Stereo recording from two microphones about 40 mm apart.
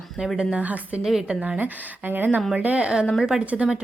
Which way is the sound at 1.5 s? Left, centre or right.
Right.